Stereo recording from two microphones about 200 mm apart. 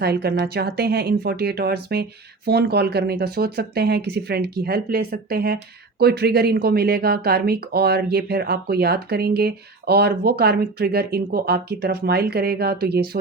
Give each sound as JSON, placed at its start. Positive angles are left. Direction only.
{"t": 0.0, "sound": "speech", "side_deg": -55}